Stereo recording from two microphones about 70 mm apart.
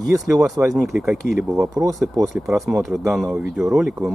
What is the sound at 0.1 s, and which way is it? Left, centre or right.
Speech, right.